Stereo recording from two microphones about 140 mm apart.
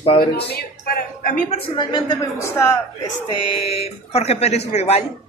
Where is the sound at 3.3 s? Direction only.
35° left (ahead or behind).